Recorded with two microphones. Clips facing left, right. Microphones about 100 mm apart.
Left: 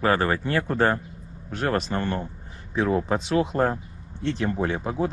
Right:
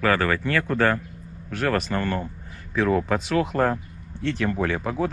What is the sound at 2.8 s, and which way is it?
Speech, 90° right.